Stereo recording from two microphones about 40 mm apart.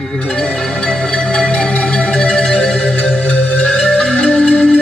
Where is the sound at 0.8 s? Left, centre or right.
Left.